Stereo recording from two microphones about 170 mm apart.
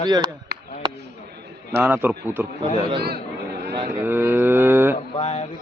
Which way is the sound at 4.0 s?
10° right (ahead or behind).